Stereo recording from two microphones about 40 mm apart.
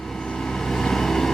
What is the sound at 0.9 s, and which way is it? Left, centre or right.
Vehicle, centre.